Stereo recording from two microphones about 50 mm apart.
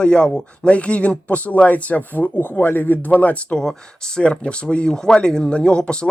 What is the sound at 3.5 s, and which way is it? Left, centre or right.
Speech, centre.